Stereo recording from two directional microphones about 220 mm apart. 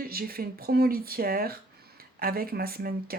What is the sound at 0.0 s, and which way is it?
Speech, 45° right (ahead or behind).